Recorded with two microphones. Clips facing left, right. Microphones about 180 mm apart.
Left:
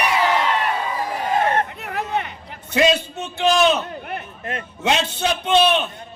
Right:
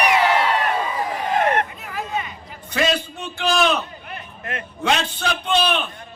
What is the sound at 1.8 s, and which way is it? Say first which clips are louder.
Hubbub: left 3 dB; 65° left (ahead or behind).